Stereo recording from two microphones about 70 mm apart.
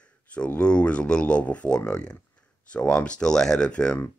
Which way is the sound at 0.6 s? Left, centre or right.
Centre.